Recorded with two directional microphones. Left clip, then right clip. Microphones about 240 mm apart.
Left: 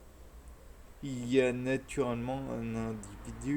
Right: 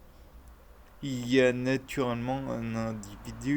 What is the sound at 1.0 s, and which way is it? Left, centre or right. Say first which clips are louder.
Speech: right 4 dB; right.